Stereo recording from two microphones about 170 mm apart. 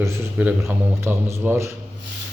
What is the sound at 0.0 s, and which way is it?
Speech, 10° right (ahead or behind).